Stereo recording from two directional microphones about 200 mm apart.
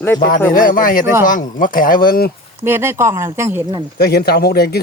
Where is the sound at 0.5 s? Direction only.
45° left (ahead or behind).